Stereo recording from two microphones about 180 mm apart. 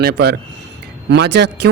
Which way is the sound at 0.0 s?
65° right (ahead or behind).